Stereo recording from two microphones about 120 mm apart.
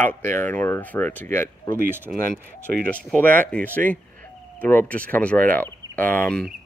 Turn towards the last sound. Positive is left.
turn(degrees=10)  # may be behind; listen again after turning